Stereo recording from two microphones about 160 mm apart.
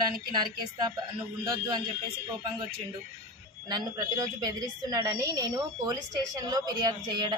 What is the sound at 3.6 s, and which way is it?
A woman's voice, 25° right (ahead or behind).